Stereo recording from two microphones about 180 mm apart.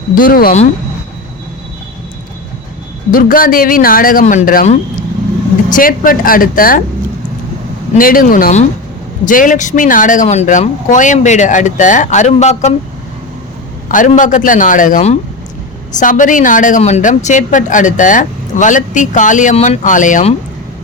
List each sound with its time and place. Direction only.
0.2 s a woman's voice: 55° left (ahead or behind)
3.1 s a woman's voice: 50° left (ahead or behind)
7.9 s a woman's voice: 50° left (ahead or behind)
13.8 s a man's voice: 45° left (ahead or behind)